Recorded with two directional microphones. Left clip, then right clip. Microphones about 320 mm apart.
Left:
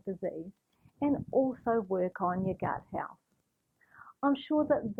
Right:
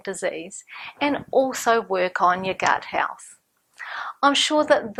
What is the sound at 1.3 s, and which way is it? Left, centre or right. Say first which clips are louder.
Speech: right 9 dB; right.